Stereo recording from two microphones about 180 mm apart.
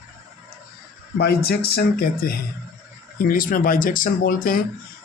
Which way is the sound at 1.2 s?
60° left (ahead or behind).